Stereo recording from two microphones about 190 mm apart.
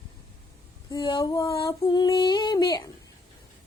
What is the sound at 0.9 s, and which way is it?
Female singing, 20° left (ahead or behind).